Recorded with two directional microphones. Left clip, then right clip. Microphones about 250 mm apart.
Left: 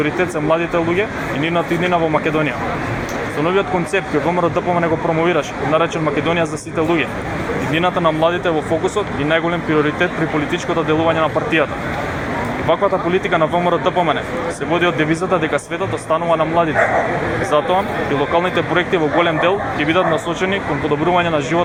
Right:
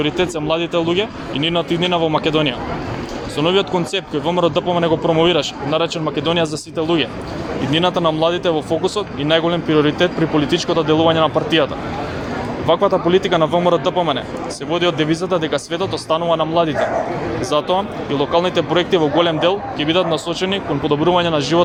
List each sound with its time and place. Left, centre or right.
0.0 s speech: right
17.7 s speech: right